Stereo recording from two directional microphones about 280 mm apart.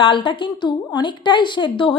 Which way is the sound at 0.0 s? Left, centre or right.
Centre.